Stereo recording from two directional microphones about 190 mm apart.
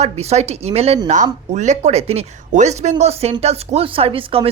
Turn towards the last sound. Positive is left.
turn(degrees=-30)  # may be behind; listen again after turning